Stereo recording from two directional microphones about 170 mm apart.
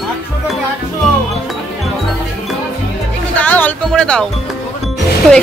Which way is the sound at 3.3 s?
10° left (ahead or behind).